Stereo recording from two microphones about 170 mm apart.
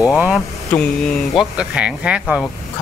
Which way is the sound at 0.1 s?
Centre (ahead or behind).